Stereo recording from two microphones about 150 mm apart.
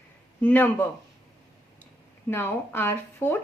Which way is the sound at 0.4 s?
10° left (ahead or behind).